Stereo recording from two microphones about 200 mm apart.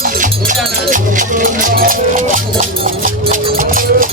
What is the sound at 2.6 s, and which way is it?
Clip-clop, 40° right (ahead or behind).